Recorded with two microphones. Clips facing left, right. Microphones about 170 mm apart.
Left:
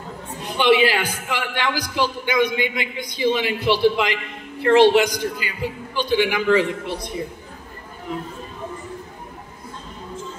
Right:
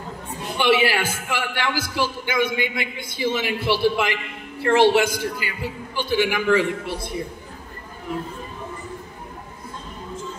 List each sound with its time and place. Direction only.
0.4 s a man's voice: 15° left (ahead or behind)